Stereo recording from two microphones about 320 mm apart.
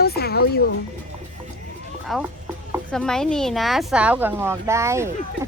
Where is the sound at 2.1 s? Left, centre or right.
Centre.